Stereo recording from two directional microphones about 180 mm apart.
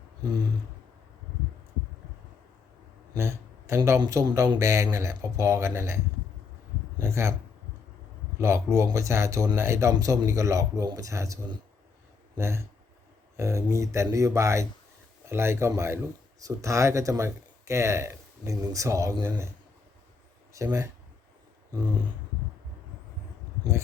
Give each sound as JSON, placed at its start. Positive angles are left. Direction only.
{"t": 3.2, "sound": "speech", "side_deg": -15}
{"t": 7.0, "sound": "speech", "side_deg": -15}
{"t": 8.4, "sound": "speech", "side_deg": -15}
{"t": 12.4, "sound": "speech", "side_deg": -15}
{"t": 20.5, "sound": "speech", "side_deg": -15}
{"t": 21.7, "sound": "a sound", "side_deg": -20}